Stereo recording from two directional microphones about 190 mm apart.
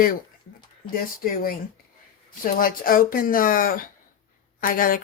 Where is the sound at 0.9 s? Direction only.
50° left (ahead or behind).